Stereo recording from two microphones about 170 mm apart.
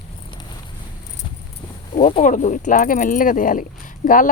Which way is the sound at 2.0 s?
45° left (ahead or behind).